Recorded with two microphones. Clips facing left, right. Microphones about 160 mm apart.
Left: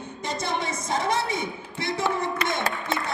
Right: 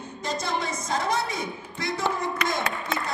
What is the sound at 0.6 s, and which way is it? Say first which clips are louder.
Speech: left 1 dB; 20° left (ahead or behind).